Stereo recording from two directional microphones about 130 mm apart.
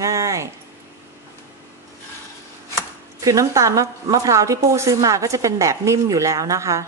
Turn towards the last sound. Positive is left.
turn(degrees=-25)  # may be behind; listen again after turning